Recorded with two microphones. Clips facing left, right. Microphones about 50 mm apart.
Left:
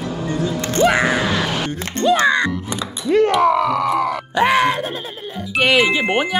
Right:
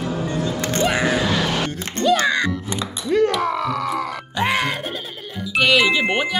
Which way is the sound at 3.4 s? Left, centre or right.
Left.